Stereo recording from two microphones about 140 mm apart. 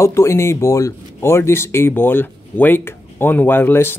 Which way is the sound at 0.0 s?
20° left (ahead or behind).